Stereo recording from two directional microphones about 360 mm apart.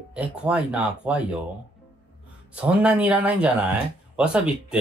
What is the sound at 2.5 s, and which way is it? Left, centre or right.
Speech, centre.